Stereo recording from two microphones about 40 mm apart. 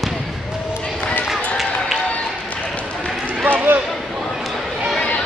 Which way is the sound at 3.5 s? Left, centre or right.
Right.